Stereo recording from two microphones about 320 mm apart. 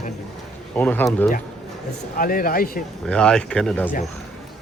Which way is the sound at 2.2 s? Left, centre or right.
Left.